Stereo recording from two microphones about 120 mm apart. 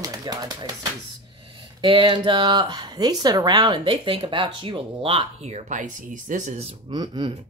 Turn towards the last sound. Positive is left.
turn(degrees=-35)  # may be behind; listen again after turning